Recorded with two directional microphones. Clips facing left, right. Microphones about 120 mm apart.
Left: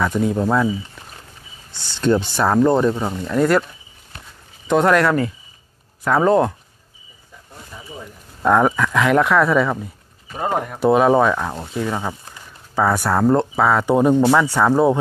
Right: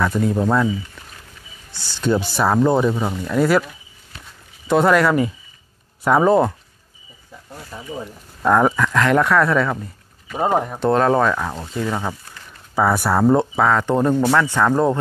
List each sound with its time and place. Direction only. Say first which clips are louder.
0.0 s speech: even; centre (ahead or behind)
1.7 s speech: right 1 dB; 25° left (ahead or behind)
2.0 s speech: left 2 dB; 5° right (ahead or behind)
4.6 s speech: even; 5° right (ahead or behind)
7.7 s a sound: right 4 dB; 35° right (ahead or behind)
8.4 s speech: even; centre (ahead or behind)
10.4 s speech: right 3 dB; 15° right (ahead or behind)
10.8 s speech: left 4 dB; 10° left (ahead or behind)
12.7 s speech: even; 10° right (ahead or behind); by 15.0 s 10° left (ahead or behind)